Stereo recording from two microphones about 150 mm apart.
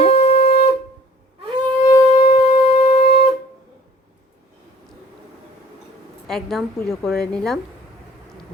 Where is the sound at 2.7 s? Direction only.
40° left (ahead or behind).